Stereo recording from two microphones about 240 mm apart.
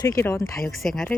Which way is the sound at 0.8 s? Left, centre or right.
Centre.